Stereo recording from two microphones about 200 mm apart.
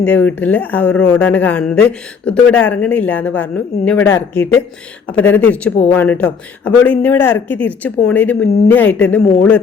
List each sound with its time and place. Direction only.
0.0 s speech: 5° left (ahead or behind)